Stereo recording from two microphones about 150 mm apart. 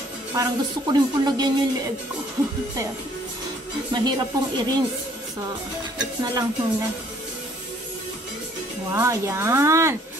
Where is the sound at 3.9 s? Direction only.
30° right (ahead or behind).